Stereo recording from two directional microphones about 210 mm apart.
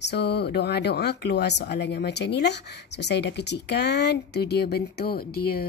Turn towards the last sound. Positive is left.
turn(degrees=50)  # may be behind; listen again after turning